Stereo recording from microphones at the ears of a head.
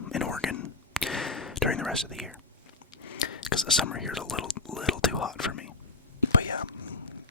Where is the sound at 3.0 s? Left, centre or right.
Left.